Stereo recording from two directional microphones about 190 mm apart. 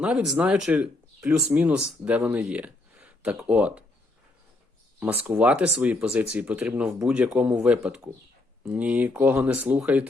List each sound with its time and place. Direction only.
0.0 s speech: 5° right (ahead or behind)
4.9 s speech: 10° right (ahead or behind)